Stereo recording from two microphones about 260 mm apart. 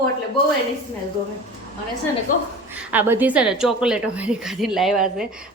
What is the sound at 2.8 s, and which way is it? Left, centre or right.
A woman's voice, centre.